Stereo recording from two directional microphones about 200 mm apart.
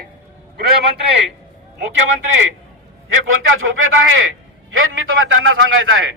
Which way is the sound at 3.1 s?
90° right.